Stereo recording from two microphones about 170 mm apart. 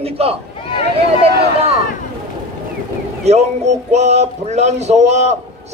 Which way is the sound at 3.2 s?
40° right (ahead or behind).